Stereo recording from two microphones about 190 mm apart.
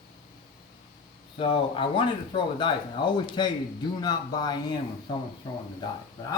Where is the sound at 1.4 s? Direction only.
30° left (ahead or behind).